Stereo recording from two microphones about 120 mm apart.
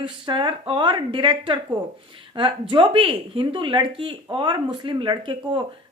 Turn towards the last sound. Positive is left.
turn(degrees=-40)  # may be behind; listen again after turning